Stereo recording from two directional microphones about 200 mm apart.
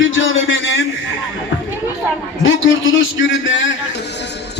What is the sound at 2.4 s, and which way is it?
A man's voice, 75° left (ahead or behind).